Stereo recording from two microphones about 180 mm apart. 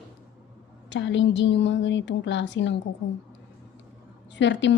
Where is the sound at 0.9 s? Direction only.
90° left.